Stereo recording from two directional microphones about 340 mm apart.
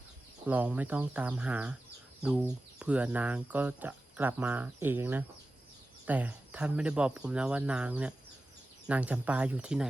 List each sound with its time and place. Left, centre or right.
0.4 s speech: centre